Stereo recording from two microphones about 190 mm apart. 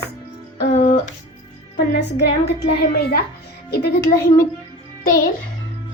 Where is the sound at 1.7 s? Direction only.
60° left (ahead or behind).